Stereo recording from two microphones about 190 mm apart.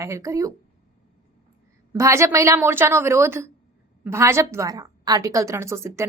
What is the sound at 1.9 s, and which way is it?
A woman's voice, 15° right (ahead or behind).